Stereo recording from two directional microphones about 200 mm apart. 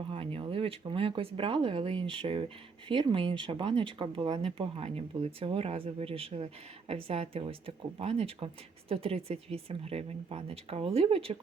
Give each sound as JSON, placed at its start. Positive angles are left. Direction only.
{"t": 0.1, "sound": "speech", "side_deg": -30}